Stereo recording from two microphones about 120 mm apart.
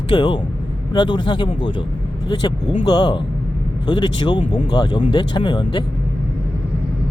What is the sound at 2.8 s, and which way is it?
Speech, 35° left (ahead or behind).